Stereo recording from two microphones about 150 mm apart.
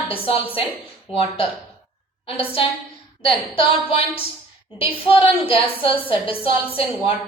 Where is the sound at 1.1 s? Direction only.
40° left (ahead or behind).